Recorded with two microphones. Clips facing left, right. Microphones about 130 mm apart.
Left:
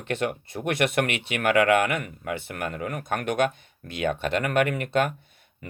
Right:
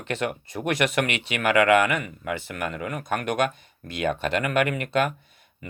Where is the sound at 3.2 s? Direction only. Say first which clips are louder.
Left 2 dB; 50° right (ahead or behind).